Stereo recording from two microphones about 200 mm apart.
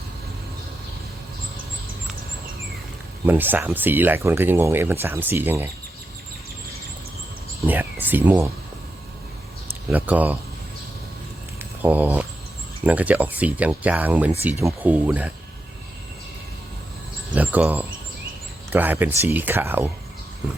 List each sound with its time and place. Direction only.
3.2 s speech: 10° right (ahead or behind)
7.7 s a sound: 10° right (ahead or behind)
9.9 s speech: 10° right (ahead or behind)
11.8 s speech: 10° right (ahead or behind)
17.3 s speech: 10° right (ahead or behind)